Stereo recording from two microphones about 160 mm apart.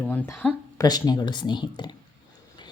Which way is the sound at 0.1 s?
10° left (ahead or behind).